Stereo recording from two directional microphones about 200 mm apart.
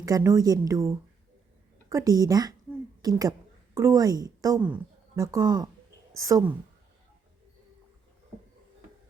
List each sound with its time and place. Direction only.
0.0 s a woman's voice: 15° right (ahead or behind)